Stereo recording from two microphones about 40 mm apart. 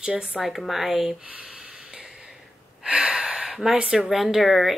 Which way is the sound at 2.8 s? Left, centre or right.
Centre.